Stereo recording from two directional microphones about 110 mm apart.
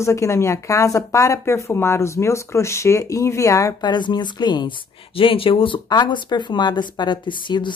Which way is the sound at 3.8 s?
45° left (ahead or behind).